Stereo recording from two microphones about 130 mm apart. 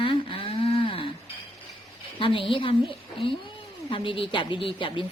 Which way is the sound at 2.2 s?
40° left (ahead or behind).